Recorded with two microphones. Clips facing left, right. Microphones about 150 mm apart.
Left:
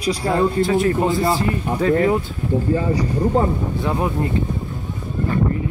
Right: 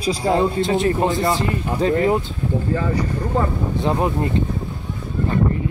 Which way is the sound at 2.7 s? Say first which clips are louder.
Left 2 dB; 25° left (ahead or behind).